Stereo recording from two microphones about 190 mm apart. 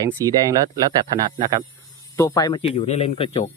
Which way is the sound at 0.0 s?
15° right (ahead or behind).